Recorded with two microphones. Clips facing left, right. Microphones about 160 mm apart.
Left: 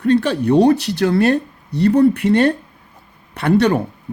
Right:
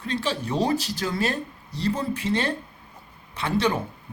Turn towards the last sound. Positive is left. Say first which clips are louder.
# left 9 dB
turn(degrees=65)  # may be behind; listen again after turning